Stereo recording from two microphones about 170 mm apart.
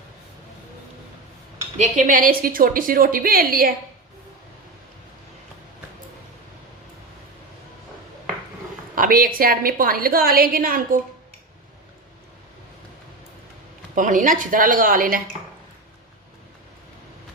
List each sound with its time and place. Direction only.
1.8 s a woman's voice: 50° right (ahead or behind)
9.0 s a woman's voice: 55° right (ahead or behind)
13.9 s speech: 50° right (ahead or behind)